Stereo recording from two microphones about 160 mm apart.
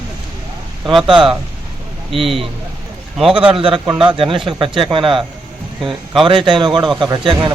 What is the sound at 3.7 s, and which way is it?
Speech, 5° right (ahead or behind).